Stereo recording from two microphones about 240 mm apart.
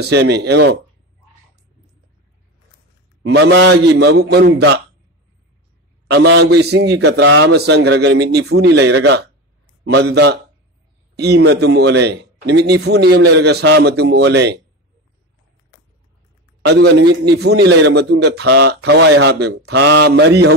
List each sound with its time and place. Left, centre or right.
0.0 s a man's voice: right
3.2 s a man's voice: right
6.0 s a man's voice: right
16.6 s a man's voice: right